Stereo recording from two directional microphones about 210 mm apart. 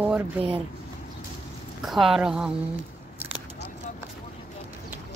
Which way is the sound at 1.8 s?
Centre (ahead or behind).